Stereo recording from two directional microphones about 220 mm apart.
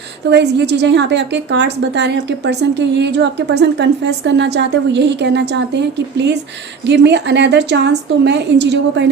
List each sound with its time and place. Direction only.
0.3 s a woman's voice: 50° right (ahead or behind)